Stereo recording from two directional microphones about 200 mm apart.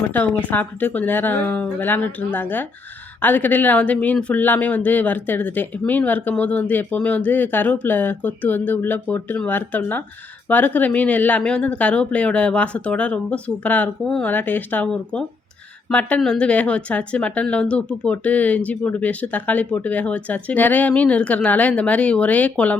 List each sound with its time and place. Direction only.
0.1 s speech: 10° left (ahead or behind)